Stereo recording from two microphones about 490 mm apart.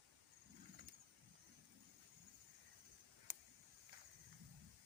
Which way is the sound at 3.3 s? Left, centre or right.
Right.